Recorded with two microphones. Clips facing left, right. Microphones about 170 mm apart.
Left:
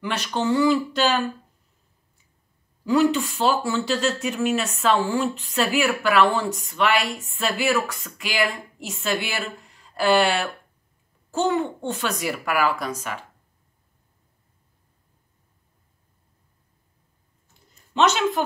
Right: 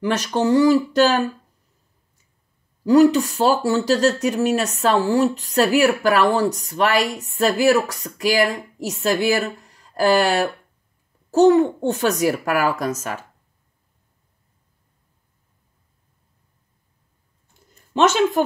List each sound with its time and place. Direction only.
0.0 s a child's voice: 40° right (ahead or behind)
2.8 s a child's voice: 40° right (ahead or behind)
17.9 s a child's voice: 45° right (ahead or behind)